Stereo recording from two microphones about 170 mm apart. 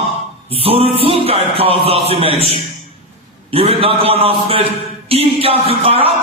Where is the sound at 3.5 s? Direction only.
35° right (ahead or behind).